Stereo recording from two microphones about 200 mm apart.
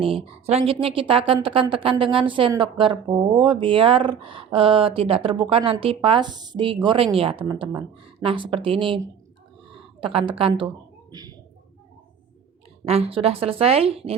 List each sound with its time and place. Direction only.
0.0 s a woman's voice: 30° right (ahead or behind)
8.2 s a woman's voice: 25° right (ahead or behind)
10.0 s a woman's voice: 25° right (ahead or behind)
12.8 s a woman's voice: 30° right (ahead or behind)